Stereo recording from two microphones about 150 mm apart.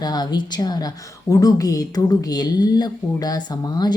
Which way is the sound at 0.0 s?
25° left (ahead or behind).